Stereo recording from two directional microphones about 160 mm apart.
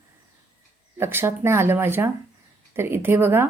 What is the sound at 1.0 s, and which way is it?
A woman's voice, 15° right (ahead or behind).